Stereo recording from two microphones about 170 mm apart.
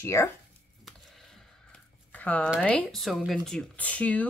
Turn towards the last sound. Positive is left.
turn(degrees=10)  # may be behind; listen again after turning